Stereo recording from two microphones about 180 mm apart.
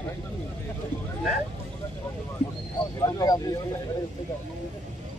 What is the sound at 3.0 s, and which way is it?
Speech, 20° left (ahead or behind).